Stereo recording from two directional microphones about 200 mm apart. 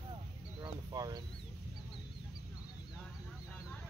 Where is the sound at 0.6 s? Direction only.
20° right (ahead or behind).